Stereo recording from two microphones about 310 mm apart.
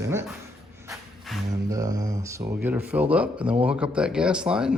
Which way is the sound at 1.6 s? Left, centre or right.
Centre.